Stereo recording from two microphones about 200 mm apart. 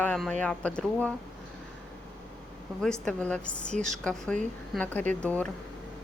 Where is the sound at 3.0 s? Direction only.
5° left (ahead or behind).